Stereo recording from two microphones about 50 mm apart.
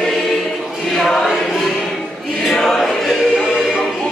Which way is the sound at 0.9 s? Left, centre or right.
Centre.